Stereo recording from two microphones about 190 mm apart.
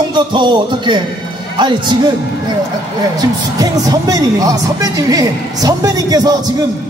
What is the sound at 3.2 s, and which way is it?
Speech, 20° right (ahead or behind).